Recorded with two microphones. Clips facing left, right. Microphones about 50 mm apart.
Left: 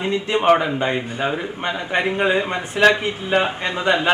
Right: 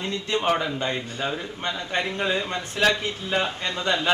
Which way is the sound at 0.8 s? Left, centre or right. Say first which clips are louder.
Left 6 dB; left.